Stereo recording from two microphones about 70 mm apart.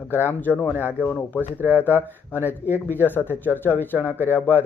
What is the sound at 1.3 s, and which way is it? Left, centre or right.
Speech, right.